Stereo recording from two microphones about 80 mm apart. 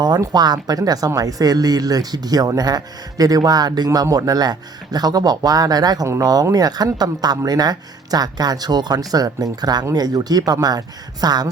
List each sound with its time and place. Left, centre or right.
0.2 s speech: right